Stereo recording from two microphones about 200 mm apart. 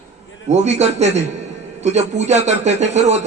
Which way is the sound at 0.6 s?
35° right (ahead or behind).